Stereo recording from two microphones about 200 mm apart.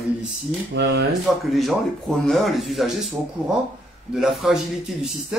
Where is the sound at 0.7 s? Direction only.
55° right (ahead or behind).